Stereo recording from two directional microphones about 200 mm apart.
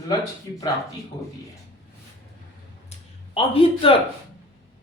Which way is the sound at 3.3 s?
30° left (ahead or behind).